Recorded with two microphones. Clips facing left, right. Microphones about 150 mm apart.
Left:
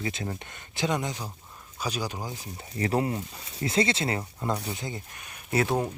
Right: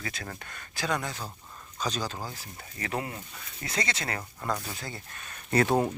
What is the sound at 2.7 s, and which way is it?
Speech, 35° left (ahead or behind).